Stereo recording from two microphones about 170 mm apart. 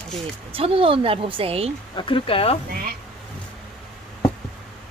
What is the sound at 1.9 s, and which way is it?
Speech, 30° left (ahead or behind).